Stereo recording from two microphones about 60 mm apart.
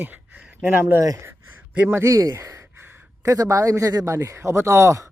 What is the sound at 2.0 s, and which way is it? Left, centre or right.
A man's voice, right.